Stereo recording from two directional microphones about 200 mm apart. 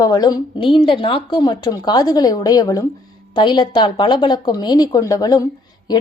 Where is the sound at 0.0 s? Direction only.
20° left (ahead or behind).